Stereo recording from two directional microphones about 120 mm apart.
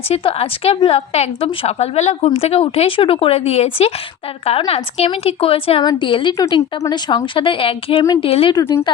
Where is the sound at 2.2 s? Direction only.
55° left (ahead or behind).